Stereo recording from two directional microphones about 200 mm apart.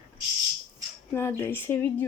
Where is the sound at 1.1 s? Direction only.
10° left (ahead or behind).